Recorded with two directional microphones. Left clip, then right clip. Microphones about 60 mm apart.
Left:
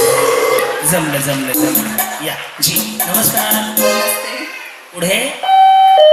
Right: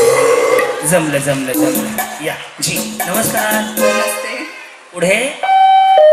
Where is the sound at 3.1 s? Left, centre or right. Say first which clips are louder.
Right 2 dB; right.